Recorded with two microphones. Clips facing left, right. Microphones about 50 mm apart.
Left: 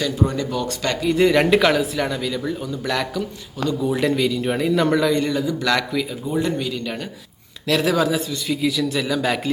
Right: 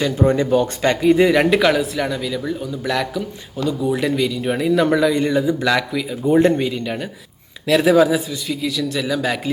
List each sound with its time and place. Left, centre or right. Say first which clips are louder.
0.0 s speech: right 5 dB; right
1.1 s speech: left 1 dB; centre
5.2 s speech: right 4 dB; centre
5.6 s speech: right 2 dB; centre
6.2 s speech: right 12 dB; right
6.6 s speech: right 4 dB; right
7.7 s speech: right 5 dB; centre